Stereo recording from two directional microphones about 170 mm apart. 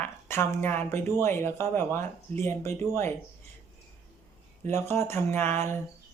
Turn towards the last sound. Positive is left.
turn(degrees=15)  # may be behind; listen again after turning